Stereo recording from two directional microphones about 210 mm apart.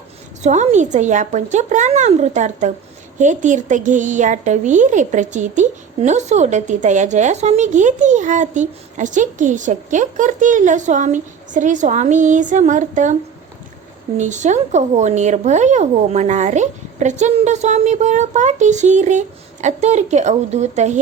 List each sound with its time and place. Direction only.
0.4 s speech: 35° right (ahead or behind)
14.2 s speech: 35° right (ahead or behind)